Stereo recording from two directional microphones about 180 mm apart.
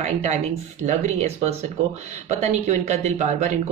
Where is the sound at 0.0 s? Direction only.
40° right (ahead or behind).